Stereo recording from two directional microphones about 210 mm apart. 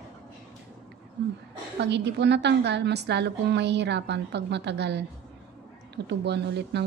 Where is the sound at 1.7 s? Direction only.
55° right (ahead or behind).